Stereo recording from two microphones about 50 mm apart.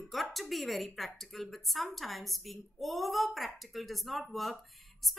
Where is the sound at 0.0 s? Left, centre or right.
Centre.